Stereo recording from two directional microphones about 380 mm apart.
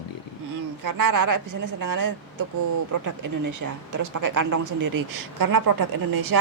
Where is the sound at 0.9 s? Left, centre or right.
Right.